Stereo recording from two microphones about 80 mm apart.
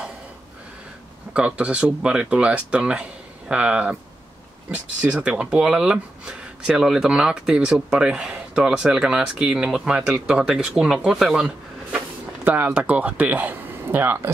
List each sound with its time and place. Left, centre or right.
1.3 s speech: centre
12.4 s speech: right